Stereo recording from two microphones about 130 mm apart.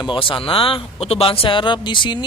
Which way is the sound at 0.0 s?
40° left (ahead or behind).